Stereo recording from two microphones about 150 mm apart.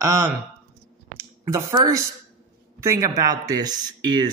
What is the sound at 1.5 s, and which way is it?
A man's voice, 20° right (ahead or behind).